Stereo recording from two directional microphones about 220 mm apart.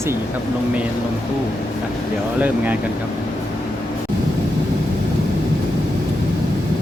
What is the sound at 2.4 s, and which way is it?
Speech, 10° right (ahead or behind).